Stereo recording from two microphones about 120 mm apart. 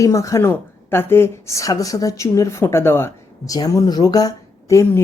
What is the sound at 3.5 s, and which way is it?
Speech, 30° left (ahead or behind).